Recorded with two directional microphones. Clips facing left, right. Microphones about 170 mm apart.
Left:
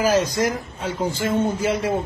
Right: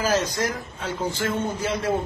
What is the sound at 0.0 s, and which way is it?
A man's voice, 10° left (ahead or behind).